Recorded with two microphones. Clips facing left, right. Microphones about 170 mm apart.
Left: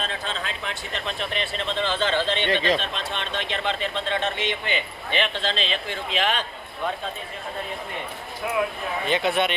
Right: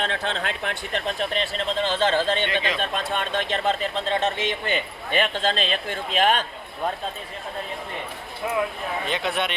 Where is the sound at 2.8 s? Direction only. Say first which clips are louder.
Right 4 dB; 50° right (ahead or behind).